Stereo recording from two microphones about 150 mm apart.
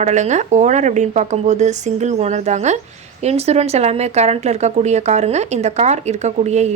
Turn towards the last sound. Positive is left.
turn(degrees=-50)  # may be behind; listen again after turning